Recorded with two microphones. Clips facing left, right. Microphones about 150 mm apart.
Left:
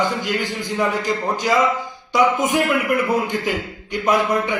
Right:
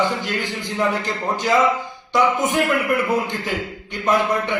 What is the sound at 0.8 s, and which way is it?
A man's voice, 15° left (ahead or behind).